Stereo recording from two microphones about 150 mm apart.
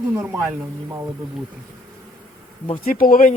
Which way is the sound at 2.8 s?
70° left (ahead or behind).